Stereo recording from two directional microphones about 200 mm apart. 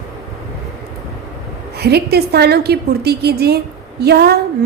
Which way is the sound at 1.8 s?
55° right (ahead or behind).